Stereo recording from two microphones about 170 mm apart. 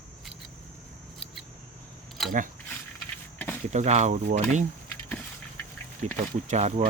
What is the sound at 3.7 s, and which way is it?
Speech, 40° right (ahead or behind).